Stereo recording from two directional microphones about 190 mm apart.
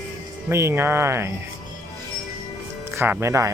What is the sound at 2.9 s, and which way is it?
Speech, 15° right (ahead or behind).